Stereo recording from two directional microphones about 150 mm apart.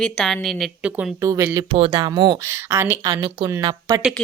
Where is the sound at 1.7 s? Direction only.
35° right (ahead or behind).